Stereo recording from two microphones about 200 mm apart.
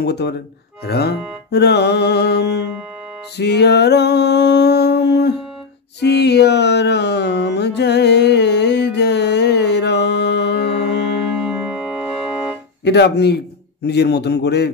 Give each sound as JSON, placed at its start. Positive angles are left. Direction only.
{"t": 0.0, "sound": "music", "side_deg": 55}
{"t": 3.3, "sound": "a sound", "side_deg": 55}
{"t": 5.9, "sound": "music", "side_deg": 55}
{"t": 11.4, "sound": "organ", "side_deg": -5}
{"t": 12.8, "sound": "music", "side_deg": 60}